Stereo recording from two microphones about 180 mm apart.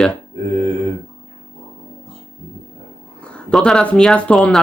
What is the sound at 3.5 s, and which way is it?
Speech, centre (ahead or behind).